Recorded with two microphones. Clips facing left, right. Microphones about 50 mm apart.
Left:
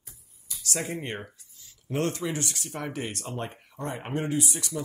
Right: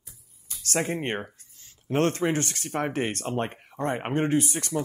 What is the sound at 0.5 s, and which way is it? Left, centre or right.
Speech, right.